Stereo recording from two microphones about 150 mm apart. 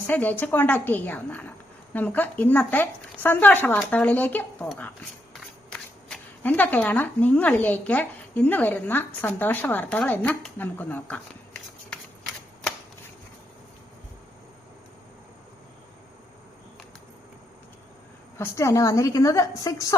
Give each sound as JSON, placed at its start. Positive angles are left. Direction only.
{"t": 0.1, "sound": "a woman's voice", "side_deg": 10}
{"t": 18.3, "sound": "a woman's voice", "side_deg": 20}